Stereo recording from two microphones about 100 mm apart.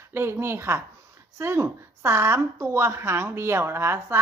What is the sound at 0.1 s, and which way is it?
A woman's voice, 25° right (ahead or behind).